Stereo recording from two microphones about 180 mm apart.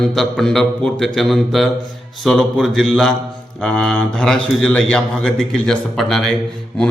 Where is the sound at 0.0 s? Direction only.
5° left (ahead or behind).